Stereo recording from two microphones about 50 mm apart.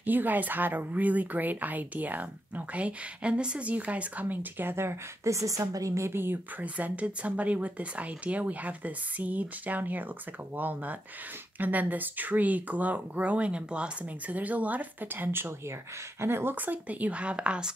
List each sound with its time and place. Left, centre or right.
0.0 s speech: right
5.2 s a woman's voice: right
6.6 s speech: right
16.5 s speech: right; by 17.7 s centre